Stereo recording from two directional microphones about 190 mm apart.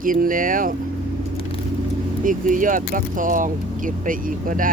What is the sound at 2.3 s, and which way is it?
Speech, 45° right (ahead or behind).